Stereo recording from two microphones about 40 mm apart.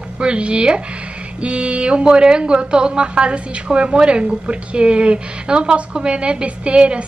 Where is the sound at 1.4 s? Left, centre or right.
Right.